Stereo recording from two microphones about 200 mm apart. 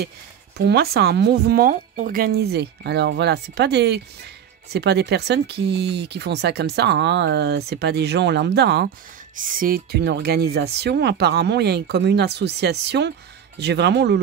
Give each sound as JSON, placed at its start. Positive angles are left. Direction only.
{"t": 0.6, "sound": "speech", "side_deg": -55}
{"t": 9.4, "sound": "speech", "side_deg": -45}